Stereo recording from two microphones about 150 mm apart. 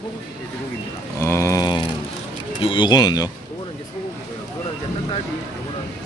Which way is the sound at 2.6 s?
35° left (ahead or behind).